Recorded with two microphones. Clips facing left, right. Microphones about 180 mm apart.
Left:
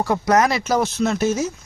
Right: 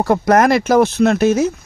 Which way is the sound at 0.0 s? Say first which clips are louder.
Right 5 dB; 55° right (ahead or behind).